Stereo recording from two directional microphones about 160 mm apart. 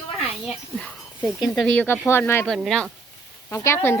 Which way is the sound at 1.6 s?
5° left (ahead or behind).